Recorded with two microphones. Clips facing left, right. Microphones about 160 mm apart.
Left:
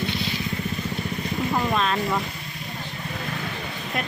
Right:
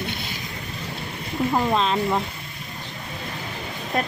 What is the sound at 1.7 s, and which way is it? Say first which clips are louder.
Speech: right 2 dB; 25° right (ahead or behind).